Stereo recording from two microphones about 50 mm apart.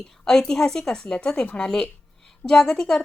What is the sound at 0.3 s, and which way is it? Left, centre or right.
Speech, centre.